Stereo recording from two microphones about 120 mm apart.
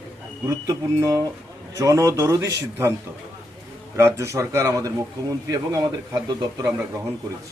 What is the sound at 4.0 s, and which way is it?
A man's voice, 20° right (ahead or behind).